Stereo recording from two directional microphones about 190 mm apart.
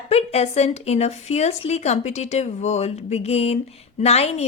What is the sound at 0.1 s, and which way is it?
A woman's voice, 35° left (ahead or behind).